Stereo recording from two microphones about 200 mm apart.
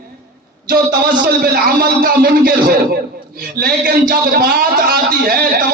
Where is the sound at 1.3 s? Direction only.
50° right (ahead or behind).